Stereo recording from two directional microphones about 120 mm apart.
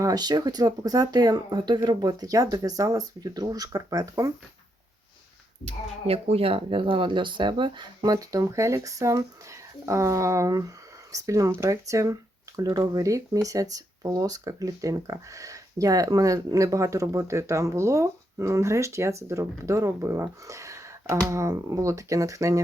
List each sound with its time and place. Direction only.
0.0 s speech: 35° right (ahead or behind)
5.6 s speech: 55° right (ahead or behind); by 8.1 s 40° right (ahead or behind)
8.1 s speech: 30° right (ahead or behind)